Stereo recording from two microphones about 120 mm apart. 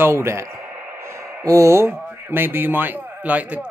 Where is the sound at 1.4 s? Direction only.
25° right (ahead or behind).